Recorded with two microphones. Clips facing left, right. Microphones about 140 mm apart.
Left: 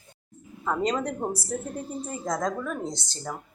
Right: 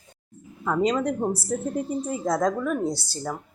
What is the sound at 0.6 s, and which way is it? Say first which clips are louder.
Speech: right 4 dB; centre (ahead or behind).